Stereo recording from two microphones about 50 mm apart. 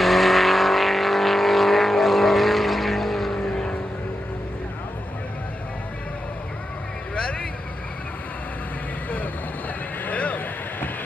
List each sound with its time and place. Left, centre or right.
0.0 s vehicle: centre
7.2 s vehicle: left
10.0 s vehicle: left